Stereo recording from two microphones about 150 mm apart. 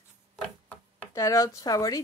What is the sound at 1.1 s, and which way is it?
Speech, 20° left (ahead or behind).